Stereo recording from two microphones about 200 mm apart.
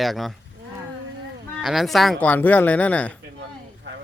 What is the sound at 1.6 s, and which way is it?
Speech, centre (ahead or behind).